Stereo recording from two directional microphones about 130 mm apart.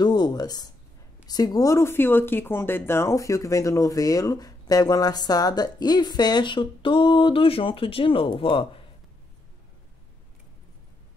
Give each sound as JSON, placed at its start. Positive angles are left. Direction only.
{"t": 0.0, "sound": "speech", "side_deg": 35}